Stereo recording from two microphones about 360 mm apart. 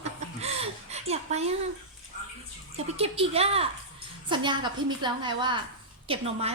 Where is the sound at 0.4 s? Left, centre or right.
Centre.